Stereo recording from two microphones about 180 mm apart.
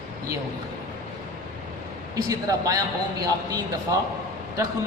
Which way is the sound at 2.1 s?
20° right (ahead or behind).